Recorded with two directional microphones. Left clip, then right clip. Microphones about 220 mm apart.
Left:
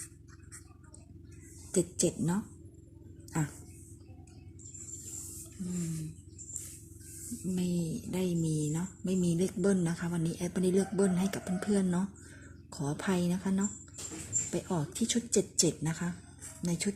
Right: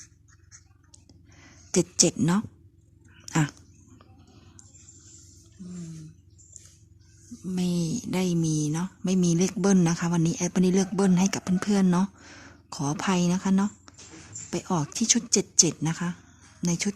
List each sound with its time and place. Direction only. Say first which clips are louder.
1.7 s speech: right 7 dB; 35° right (ahead or behind)
3.2 s a sound: right 9 dB; 40° right (ahead or behind)
7.5 s speech: right 7 dB; 30° right (ahead or behind)